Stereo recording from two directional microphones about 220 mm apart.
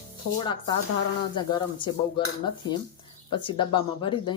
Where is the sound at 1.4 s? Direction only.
20° left (ahead or behind).